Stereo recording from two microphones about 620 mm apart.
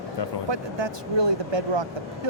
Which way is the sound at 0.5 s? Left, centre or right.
Right.